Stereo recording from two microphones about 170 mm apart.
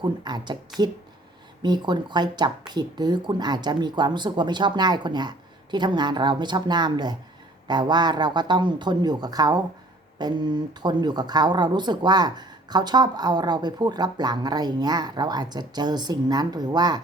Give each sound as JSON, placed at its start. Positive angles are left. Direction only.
{"t": 0.0, "sound": "speech", "side_deg": -25}
{"t": 0.7, "sound": "speech", "side_deg": 0}
{"t": 1.6, "sound": "speech", "side_deg": -25}